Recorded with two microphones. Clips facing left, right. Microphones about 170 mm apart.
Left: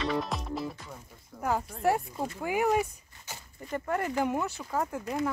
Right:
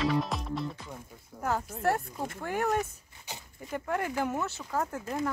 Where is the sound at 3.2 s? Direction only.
15° right (ahead or behind).